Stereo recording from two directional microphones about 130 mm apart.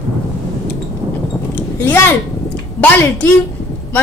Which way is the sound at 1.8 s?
15° left (ahead or behind).